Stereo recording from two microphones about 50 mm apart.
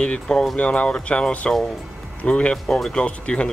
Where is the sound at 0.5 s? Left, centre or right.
Left.